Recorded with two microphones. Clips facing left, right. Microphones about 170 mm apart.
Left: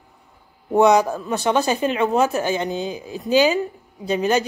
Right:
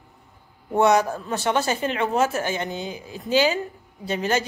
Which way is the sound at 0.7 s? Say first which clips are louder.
Left 4 dB; 15° left (ahead or behind).